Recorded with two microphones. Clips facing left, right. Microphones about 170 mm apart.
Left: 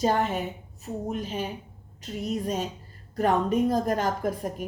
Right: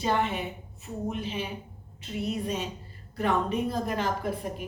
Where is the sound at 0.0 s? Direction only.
40° left (ahead or behind).